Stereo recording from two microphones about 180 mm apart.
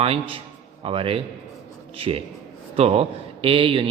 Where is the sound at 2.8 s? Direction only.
30° right (ahead or behind).